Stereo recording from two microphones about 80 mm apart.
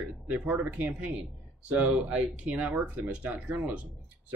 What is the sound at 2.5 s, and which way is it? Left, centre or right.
Speech, centre.